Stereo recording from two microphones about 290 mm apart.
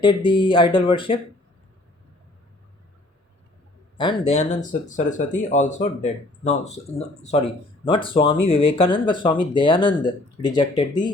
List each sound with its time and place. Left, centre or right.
0.0 s speech: centre
4.3 s speech: left